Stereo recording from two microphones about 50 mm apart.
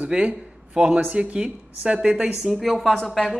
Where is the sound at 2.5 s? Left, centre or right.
Centre.